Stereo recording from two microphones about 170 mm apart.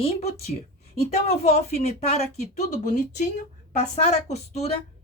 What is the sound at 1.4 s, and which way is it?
Speech, 40° left (ahead or behind).